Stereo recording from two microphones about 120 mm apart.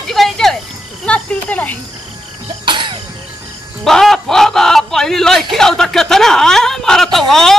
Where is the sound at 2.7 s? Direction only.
40° right (ahead or behind).